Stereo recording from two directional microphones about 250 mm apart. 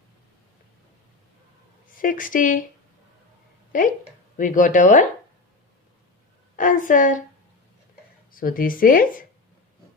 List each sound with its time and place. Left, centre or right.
2.0 s speech: left
4.4 s speech: left
6.6 s speech: left
8.3 s speech: left